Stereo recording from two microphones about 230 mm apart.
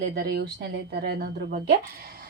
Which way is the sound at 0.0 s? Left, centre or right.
Right.